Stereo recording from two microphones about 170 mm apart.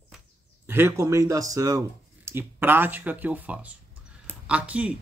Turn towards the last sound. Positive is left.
turn(degrees=-10)  # may be behind; listen again after turning